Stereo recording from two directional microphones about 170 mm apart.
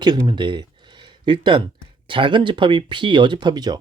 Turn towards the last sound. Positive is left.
turn(degrees=-25)  # may be behind; listen again after turning